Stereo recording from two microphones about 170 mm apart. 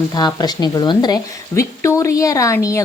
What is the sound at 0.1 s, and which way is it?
A woman's voice, 25° left (ahead or behind).